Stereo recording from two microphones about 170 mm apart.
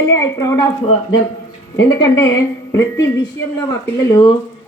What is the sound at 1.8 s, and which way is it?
A woman's voice, 20° left (ahead or behind).